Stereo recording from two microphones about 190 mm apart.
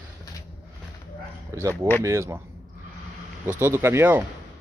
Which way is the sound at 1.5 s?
15° right (ahead or behind).